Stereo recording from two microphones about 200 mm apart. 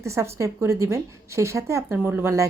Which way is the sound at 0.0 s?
15° right (ahead or behind).